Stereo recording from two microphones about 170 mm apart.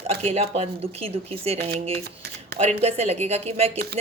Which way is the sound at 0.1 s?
35° right (ahead or behind).